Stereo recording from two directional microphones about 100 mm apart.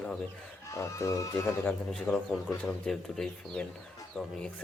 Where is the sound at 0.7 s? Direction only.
30° left (ahead or behind).